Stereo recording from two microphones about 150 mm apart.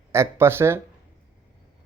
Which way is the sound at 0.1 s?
15° right (ahead or behind).